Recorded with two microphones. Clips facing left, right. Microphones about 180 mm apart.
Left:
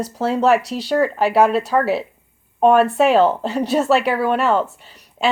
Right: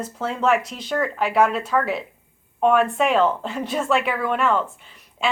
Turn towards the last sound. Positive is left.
turn(degrees=35)  # may be behind; listen again after turning